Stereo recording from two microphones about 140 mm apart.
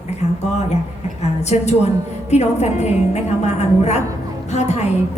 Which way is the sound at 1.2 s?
50° left (ahead or behind).